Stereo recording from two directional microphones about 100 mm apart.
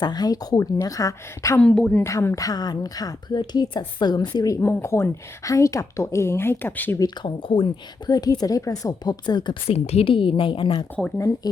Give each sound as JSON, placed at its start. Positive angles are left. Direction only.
{"t": 0.0, "sound": "a woman's voice", "side_deg": 45}
{"t": 1.5, "sound": "speech", "side_deg": 10}
{"t": 2.0, "sound": "a woman's voice", "side_deg": 30}
{"t": 7.2, "sound": "a woman's voice", "side_deg": 55}
{"t": 8.0, "sound": "a woman's voice", "side_deg": 40}
{"t": 9.2, "sound": "a woman's voice", "side_deg": 50}
{"t": 9.6, "sound": "a woman's voice", "side_deg": 90}